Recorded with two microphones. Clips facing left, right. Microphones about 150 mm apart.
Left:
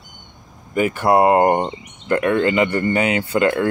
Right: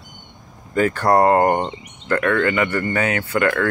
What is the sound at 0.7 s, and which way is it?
Speech, 15° left (ahead or behind).